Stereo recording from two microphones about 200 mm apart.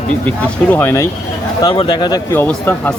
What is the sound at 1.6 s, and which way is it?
Speech, 25° left (ahead or behind).